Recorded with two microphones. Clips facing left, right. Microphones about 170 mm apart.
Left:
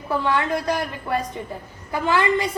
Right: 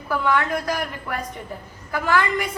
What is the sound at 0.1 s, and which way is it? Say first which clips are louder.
A woman's voice: even; 25° left (ahead or behind).